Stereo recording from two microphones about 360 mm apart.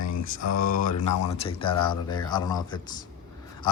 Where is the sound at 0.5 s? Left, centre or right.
Left.